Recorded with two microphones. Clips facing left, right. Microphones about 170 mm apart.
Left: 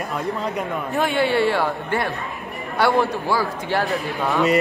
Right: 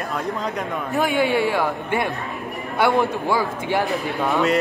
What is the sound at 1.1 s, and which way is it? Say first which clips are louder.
A man's voice: left 2 dB; 15° right (ahead or behind).